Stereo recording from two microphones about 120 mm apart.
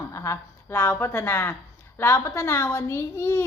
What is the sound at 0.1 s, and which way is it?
A woman's voice, 25° left (ahead or behind).